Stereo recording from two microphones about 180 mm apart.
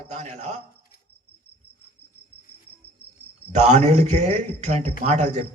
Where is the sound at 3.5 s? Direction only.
40° right (ahead or behind).